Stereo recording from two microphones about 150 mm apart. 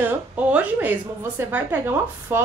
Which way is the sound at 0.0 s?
10° right (ahead or behind).